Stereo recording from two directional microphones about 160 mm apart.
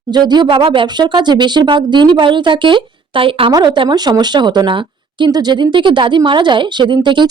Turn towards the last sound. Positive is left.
turn(degrees=-30)  # may be behind; listen again after turning